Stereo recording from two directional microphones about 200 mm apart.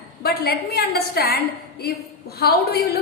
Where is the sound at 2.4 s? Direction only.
50° left (ahead or behind).